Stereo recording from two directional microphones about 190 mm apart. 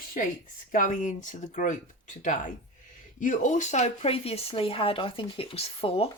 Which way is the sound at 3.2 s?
40° left (ahead or behind).